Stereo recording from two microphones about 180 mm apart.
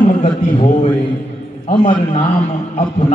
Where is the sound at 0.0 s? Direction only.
45° left (ahead or behind).